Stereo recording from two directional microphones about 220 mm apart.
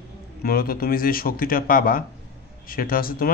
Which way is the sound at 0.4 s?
45° left (ahead or behind).